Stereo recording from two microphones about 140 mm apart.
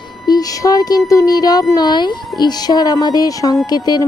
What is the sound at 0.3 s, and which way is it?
Speech, 25° left (ahead or behind).